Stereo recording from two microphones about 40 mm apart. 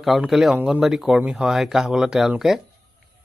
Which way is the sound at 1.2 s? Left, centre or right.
Right.